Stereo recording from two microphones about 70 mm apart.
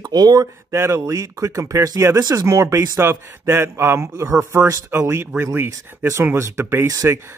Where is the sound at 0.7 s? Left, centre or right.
Right.